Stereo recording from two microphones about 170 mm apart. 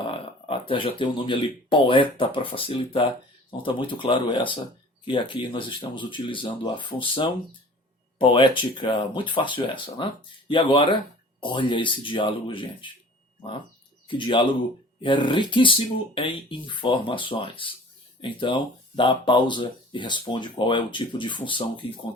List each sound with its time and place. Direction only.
0.1 s speech: 30° left (ahead or behind)
14.1 s speech: 30° left (ahead or behind)